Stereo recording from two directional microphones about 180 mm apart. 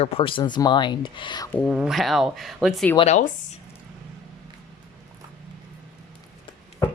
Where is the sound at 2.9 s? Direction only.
40° left (ahead or behind).